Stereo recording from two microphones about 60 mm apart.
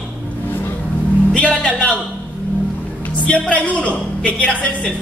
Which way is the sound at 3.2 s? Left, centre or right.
Left.